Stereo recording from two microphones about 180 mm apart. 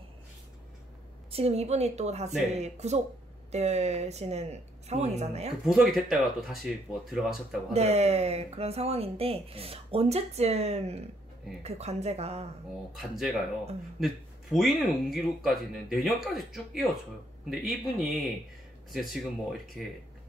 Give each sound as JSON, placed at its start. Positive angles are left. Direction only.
{"t": 1.3, "sound": "speech", "side_deg": -35}
{"t": 5.7, "sound": "speech", "side_deg": 0}
{"t": 7.7, "sound": "speech", "side_deg": -35}
{"t": 12.9, "sound": "speech", "side_deg": 0}
{"t": 19.8, "sound": "speech", "side_deg": 5}